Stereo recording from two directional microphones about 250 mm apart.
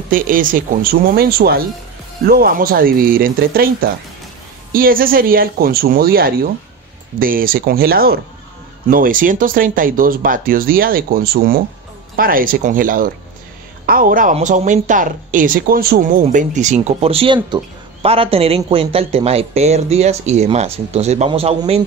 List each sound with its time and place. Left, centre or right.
0.1 s a woman's voice: right